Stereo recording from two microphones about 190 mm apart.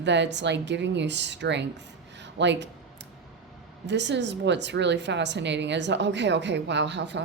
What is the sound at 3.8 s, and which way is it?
A woman's voice, 65° right (ahead or behind).